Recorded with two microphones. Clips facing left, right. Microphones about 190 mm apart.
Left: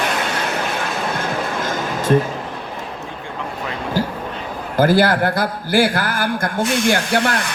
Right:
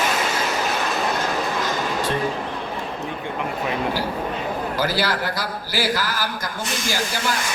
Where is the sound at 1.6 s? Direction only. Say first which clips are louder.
Left 1 dB; 50° left (ahead or behind).